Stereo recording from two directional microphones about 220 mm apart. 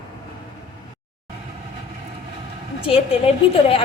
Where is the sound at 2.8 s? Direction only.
25° left (ahead or behind).